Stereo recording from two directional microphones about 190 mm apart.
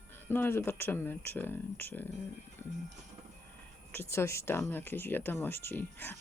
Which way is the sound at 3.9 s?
15° left (ahead or behind).